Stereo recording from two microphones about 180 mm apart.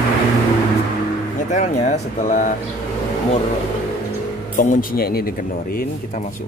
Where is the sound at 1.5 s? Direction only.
40° left (ahead or behind).